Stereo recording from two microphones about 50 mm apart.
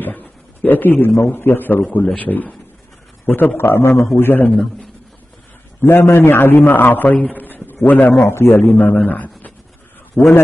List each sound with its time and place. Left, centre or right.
0.6 s a man's voice: left
2.1 s a man's voice: left
5.8 s a man's voice: left
6.7 s a man's voice: left
7.4 s a sound: left
8.2 s a man's voice: left
8.6 s speech: left
10.2 s a man's voice: centre